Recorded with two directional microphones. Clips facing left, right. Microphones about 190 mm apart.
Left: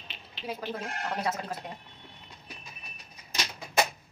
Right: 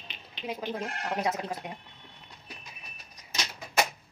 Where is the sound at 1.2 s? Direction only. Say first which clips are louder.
Right 2 dB; 15° right (ahead or behind).